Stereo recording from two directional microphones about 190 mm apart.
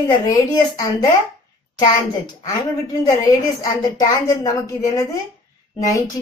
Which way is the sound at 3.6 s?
20° left (ahead or behind).